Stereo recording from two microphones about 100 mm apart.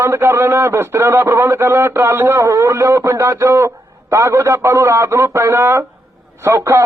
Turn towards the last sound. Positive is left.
turn(degrees=-30)  # may be behind; listen again after turning